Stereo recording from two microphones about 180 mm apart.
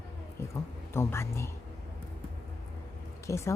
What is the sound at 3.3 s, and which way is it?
Speech, 15° left (ahead or behind).